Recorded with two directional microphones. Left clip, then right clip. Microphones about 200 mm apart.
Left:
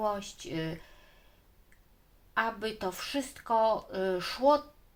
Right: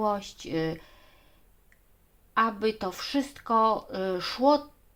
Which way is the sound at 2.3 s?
35° right (ahead or behind).